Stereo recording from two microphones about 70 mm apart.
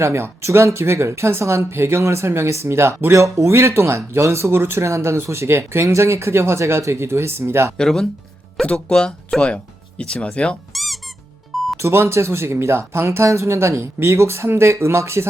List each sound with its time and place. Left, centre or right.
0.0 s speech: right
7.8 s speech: centre
10.7 s squeak: centre
11.5 s music: centre
11.8 s speech: right